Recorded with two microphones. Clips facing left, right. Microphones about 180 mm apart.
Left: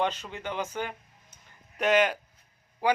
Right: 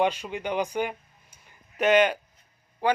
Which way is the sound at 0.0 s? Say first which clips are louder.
Right 4 dB; 10° right (ahead or behind).